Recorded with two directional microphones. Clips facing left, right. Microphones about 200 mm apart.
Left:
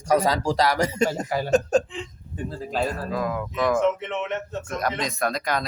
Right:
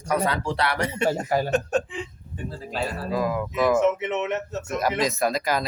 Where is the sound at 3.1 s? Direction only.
5° right (ahead or behind).